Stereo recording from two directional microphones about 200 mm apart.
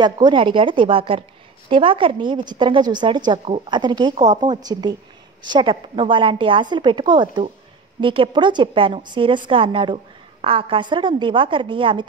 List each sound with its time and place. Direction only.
0.0 s a woman's voice: 20° right (ahead or behind)